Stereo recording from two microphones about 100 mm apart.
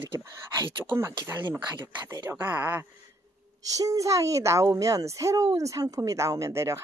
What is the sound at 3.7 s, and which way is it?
A woman's voice, 35° right (ahead or behind).